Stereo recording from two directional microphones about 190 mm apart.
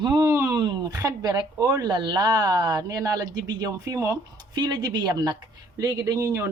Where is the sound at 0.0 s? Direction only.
15° right (ahead or behind).